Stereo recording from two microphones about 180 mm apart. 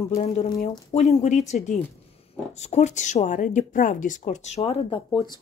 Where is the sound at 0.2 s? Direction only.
40° left (ahead or behind).